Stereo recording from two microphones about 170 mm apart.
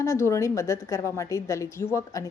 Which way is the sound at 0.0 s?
15° left (ahead or behind).